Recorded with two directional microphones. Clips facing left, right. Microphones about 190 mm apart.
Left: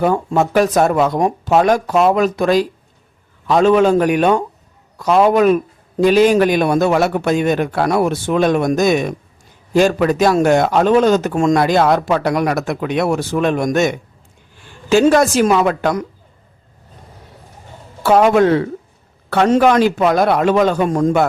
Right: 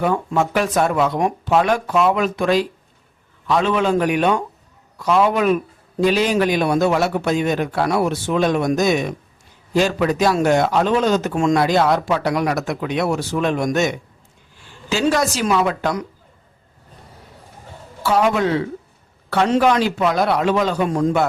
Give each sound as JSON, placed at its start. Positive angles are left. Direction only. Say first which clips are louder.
{"t": 0.0, "sound": "a man's voice", "louder": "left 4 dB", "side_deg": 40}
{"t": 18.0, "sound": "a man's voice", "louder": "left 6 dB", "side_deg": 55}